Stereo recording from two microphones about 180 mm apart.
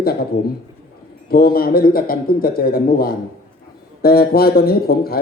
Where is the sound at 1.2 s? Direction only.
55° left (ahead or behind).